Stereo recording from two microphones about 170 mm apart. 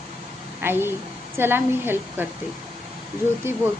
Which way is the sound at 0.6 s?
15° right (ahead or behind).